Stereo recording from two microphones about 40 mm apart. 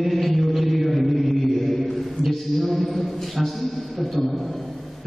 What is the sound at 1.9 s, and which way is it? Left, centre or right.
A man's voice, centre.